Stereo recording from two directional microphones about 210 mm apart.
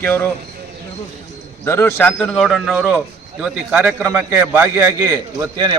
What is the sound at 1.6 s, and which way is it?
A man's voice, 10° left (ahead or behind).